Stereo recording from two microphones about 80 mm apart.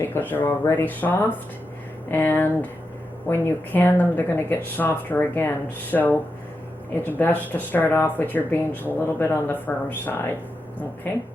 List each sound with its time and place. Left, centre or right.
0.0 s speech: left